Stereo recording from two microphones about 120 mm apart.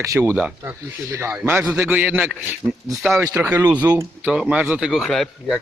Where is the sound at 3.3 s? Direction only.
20° right (ahead or behind).